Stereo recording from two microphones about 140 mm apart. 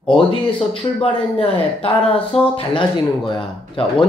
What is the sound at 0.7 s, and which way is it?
Speech, 40° left (ahead or behind).